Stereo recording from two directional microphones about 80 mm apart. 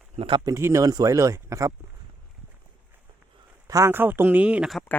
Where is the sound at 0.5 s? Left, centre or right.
Right.